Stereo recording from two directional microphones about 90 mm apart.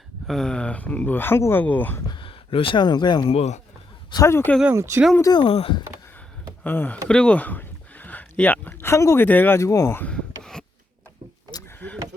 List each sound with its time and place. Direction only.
0.3 s speech: 5° left (ahead or behind)
2.0 s speech: 65° left (ahead or behind)
4.2 s speech: 30° left (ahead or behind)
4.7 s speech: 30° right (ahead or behind)
5.4 s speech: 75° left (ahead or behind)
6.7 s speech: 20° left (ahead or behind)
7.1 s a sound: 10° left (ahead or behind)
8.9 s speech: 30° left (ahead or behind)
9.2 s speech: 20° left (ahead or behind)
9.6 s speech: 35° left (ahead or behind)
10.0 s a sound: 10° left (ahead or behind)